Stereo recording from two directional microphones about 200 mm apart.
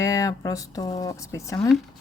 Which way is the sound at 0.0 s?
15° left (ahead or behind).